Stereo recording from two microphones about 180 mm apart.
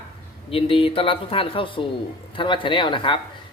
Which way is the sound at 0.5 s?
30° left (ahead or behind).